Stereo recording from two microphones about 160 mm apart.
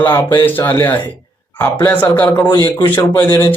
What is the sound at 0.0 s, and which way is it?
Speech, 15° left (ahead or behind).